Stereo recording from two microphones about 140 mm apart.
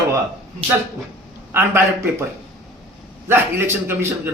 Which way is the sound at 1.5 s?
15° right (ahead or behind).